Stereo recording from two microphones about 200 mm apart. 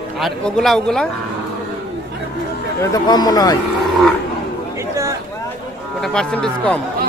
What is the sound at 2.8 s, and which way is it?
Speech, 20° left (ahead or behind).